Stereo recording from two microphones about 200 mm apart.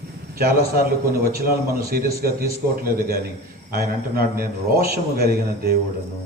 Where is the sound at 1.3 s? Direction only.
50° right (ahead or behind).